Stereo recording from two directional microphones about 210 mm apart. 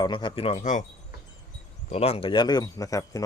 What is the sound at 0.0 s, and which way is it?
Speech, 20° left (ahead or behind).